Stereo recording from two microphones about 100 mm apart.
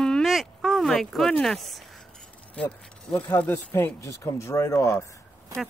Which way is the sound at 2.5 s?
15° left (ahead or behind).